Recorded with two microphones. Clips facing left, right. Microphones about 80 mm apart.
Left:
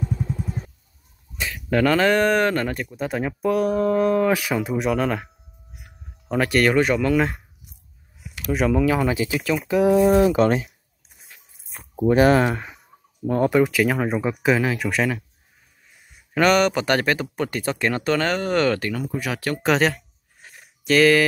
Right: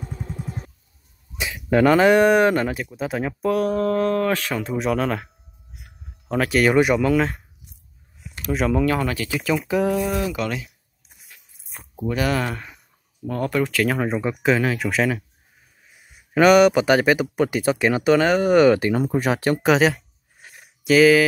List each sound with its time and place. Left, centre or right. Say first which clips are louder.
1.4 s speech: right 3 dB; centre
5.8 s a sound: even; centre
7.2 s speech: even; centre
8.5 s speech: left 1 dB; centre
9.5 s speech: right 3 dB; centre
10.0 s speech: left 8 dB; left
11.9 s speech: left 7 dB; left; by 19.0 s right
19.0 s speech: right 5 dB; right
19.6 s speech: even; centre